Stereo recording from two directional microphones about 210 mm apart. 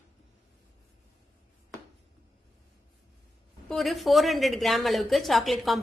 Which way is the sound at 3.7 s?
Centre (ahead or behind).